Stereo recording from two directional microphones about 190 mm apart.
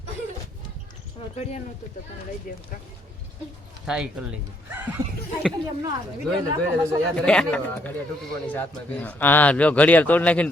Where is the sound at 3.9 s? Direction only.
5° right (ahead or behind).